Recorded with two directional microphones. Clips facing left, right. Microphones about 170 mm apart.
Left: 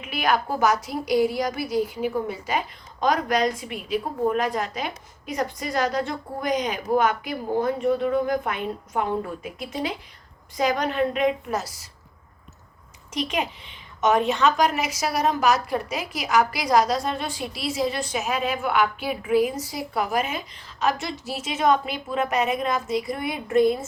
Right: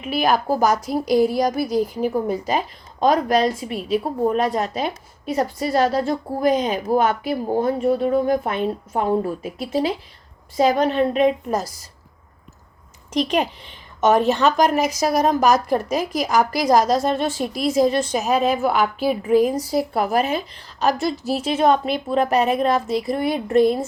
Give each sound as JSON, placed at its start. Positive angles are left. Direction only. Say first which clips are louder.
{"t": 0.2, "sound": "a woman's voice", "louder": "right 4 dB", "side_deg": -40}
{"t": 13.1, "sound": "a woman's voice", "louder": "right 6 dB", "side_deg": -35}